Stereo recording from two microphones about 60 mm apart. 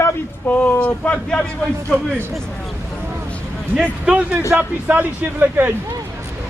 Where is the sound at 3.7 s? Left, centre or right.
Centre.